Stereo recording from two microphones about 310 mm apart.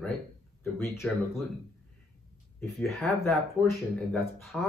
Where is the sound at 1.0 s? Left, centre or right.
Centre.